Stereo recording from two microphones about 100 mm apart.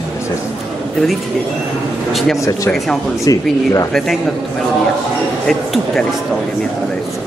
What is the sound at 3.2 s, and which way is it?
Speech, 35° left (ahead or behind).